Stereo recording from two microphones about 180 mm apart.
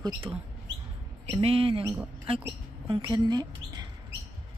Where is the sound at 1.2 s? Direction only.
30° right (ahead or behind).